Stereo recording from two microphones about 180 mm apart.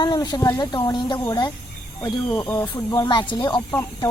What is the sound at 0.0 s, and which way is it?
Speech, 25° left (ahead or behind).